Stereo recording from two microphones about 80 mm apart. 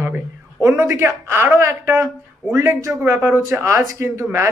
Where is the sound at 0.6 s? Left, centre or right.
Right.